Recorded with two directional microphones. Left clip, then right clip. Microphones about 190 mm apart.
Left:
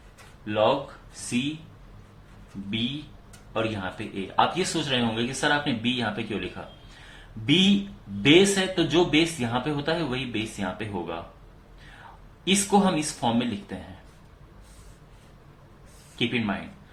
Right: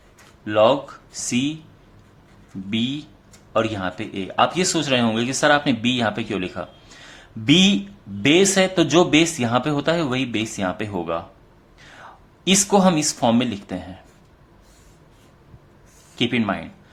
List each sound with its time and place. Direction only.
0.4 s speech: 55° right (ahead or behind)
2.6 s speech: 55° right (ahead or behind)
7.4 s speech: 50° right (ahead or behind)
12.5 s speech: 55° right (ahead or behind)
16.1 s speech: 55° right (ahead or behind)